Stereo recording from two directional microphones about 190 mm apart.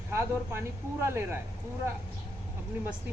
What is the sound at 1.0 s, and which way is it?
Speech, 10° right (ahead or behind).